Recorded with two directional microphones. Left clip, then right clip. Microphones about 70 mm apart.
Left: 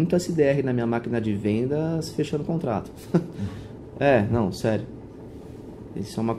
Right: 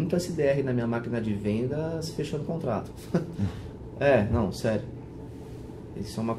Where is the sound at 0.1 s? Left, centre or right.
Left.